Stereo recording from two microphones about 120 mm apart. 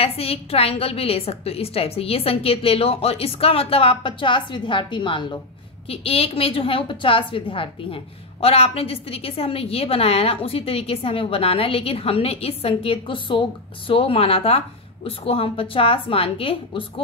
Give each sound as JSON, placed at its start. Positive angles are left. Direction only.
{"t": 0.0, "sound": "a woman's voice", "side_deg": 55}
{"t": 5.9, "sound": "a woman's voice", "side_deg": 55}